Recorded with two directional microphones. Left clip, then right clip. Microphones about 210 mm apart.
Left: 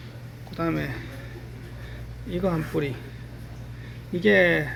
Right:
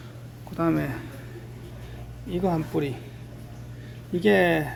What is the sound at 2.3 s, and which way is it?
Speech, 5° right (ahead or behind).